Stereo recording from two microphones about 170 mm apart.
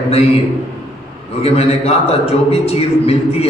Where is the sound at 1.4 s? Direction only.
35° left (ahead or behind).